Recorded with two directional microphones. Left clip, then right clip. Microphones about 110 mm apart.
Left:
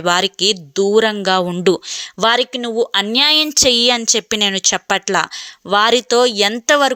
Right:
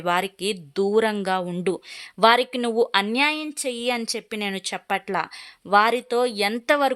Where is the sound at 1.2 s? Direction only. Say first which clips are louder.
Left 10 dB; 35° left (ahead or behind).